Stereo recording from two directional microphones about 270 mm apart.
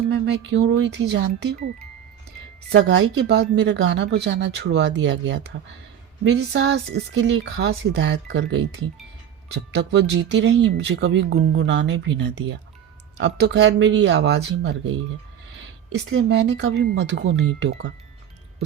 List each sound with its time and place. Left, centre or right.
0.1 s speech: right
2.7 s speech: right